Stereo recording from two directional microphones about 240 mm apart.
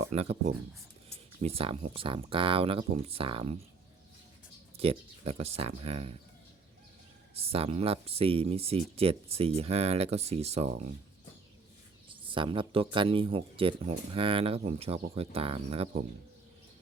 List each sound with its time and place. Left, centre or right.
0.0 s speech: right
4.8 s speech: right
7.3 s speech: right
12.2 s speech: right